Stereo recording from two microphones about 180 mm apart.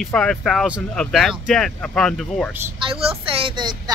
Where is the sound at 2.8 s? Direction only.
30° right (ahead or behind).